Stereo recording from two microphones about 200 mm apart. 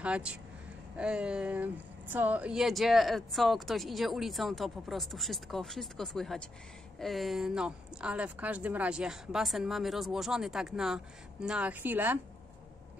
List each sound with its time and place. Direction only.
0.0 s a woman's voice: 5° right (ahead or behind)